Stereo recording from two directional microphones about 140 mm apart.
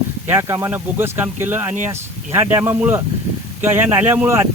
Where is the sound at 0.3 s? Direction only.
15° right (ahead or behind).